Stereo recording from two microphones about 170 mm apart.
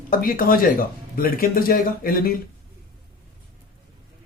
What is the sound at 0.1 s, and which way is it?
Speech, 55° left (ahead or behind).